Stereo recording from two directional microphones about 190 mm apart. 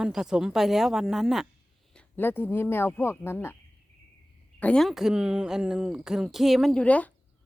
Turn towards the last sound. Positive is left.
turn(degrees=10)  # may be behind; listen again after turning